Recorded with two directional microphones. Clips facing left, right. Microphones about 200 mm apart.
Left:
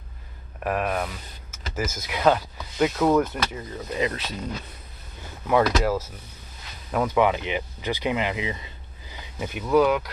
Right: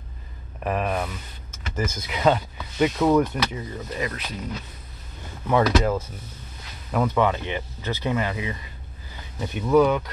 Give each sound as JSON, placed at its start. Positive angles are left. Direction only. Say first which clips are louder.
{"t": 0.7, "sound": "speech", "louder": "even", "side_deg": 0}
{"t": 4.0, "sound": "speech", "louder": "left 4 dB", "side_deg": 30}
{"t": 5.5, "sound": "speech", "louder": "right 1 dB", "side_deg": 5}
{"t": 7.2, "sound": "speech", "louder": "left 1 dB", "side_deg": 15}
{"t": 9.4, "sound": "speech", "louder": "right 2 dB", "side_deg": 5}